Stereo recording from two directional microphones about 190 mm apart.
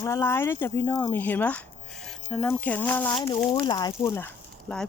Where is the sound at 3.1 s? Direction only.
25° left (ahead or behind); by 4.8 s 10° left (ahead or behind).